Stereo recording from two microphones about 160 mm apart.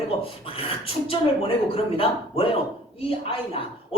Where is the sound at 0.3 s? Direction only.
35° left (ahead or behind).